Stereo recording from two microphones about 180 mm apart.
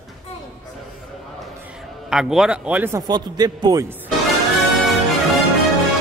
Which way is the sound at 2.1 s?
5° right (ahead or behind).